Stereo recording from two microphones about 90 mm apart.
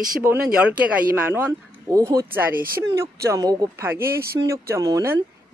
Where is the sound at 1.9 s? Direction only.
35° right (ahead or behind).